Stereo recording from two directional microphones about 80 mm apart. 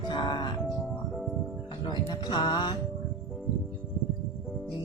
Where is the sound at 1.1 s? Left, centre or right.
Centre.